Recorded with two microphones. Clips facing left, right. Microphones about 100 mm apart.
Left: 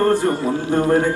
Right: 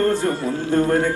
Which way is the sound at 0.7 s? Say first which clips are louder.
Left 1 dB; 15° left (ahead or behind).